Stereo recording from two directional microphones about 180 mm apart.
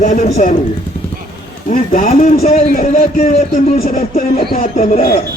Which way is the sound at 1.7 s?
50° left (ahead or behind).